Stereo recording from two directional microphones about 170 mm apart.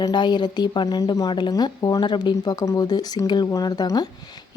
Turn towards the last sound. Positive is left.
turn(degrees=25)  # may be behind; listen again after turning